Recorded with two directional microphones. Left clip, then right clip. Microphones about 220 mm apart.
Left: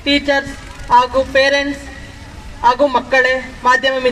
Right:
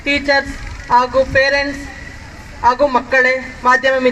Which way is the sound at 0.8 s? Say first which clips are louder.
Left 1 dB; 55° left (ahead or behind).